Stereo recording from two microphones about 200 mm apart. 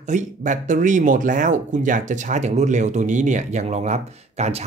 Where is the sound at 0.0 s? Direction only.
40° right (ahead or behind).